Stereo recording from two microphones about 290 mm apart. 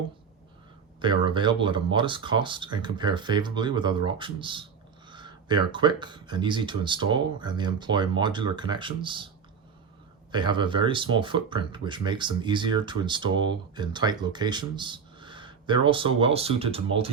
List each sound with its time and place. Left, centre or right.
1.0 s speech: centre
10.3 s speech: centre